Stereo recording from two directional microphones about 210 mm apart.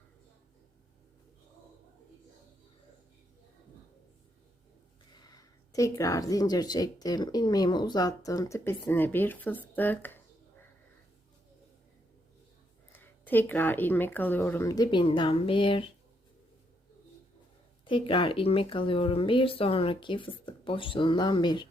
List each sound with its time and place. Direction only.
5.1 s speech: 20° left (ahead or behind)
12.9 s speech: 10° left (ahead or behind)
17.8 s speech: 25° left (ahead or behind)